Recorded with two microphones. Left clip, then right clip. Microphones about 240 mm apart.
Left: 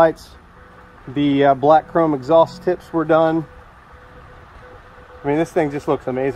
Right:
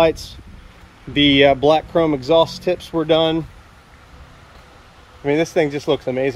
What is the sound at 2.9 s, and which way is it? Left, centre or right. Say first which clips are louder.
Speech: left 1 dB; right.